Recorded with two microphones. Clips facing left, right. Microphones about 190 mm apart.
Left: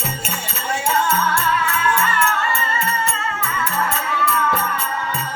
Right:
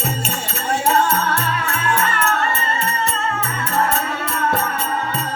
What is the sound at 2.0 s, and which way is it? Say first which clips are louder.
Music: right 1 dB; 40° right (ahead or behind).